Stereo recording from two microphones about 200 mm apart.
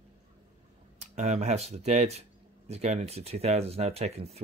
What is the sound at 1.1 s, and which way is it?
Speech, 35° right (ahead or behind).